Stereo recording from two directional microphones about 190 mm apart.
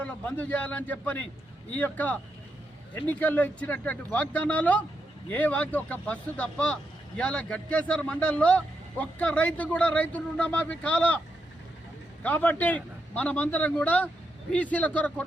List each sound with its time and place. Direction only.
0.0 s speech: 5° left (ahead or behind)
12.2 s speech: 10° left (ahead or behind)